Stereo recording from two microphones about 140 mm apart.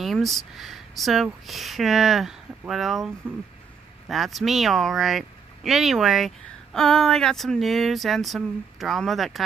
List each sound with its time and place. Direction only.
0.0 s speech: centre (ahead or behind)
4.1 s speech: centre (ahead or behind)